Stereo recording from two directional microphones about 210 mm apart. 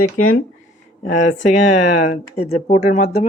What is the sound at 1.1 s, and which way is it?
Speech, 35° left (ahead or behind).